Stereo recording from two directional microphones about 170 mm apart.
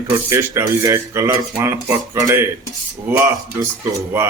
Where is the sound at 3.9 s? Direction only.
15° right (ahead or behind).